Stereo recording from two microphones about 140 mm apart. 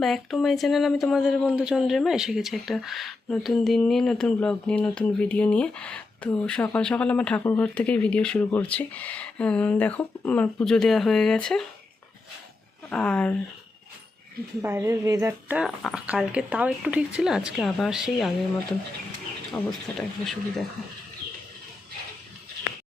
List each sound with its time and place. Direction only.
0.0 s speech: centre (ahead or behind)
12.9 s speech: 5° left (ahead or behind)
14.6 s a woman's voice: 20° right (ahead or behind)
15.6 s speech: centre (ahead or behind)
19.6 s speech: 10° left (ahead or behind)